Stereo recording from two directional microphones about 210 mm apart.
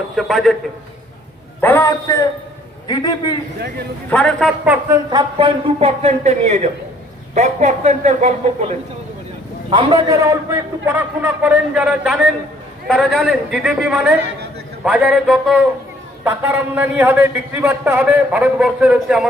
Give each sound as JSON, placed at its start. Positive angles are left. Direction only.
{"t": 0.2, "sound": "a man's voice", "side_deg": 0}
{"t": 1.6, "sound": "a man's voice", "side_deg": 10}
{"t": 4.1, "sound": "a man's voice", "side_deg": 5}
{"t": 5.1, "sound": "a man's voice", "side_deg": -25}
{"t": 9.6, "sound": "a man's voice", "side_deg": -20}